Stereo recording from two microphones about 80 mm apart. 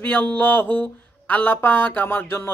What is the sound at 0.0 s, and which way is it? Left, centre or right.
Speech, left.